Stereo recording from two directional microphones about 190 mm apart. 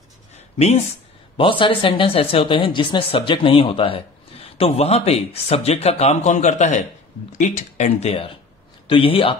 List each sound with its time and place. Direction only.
0.6 s speech: 35° left (ahead or behind)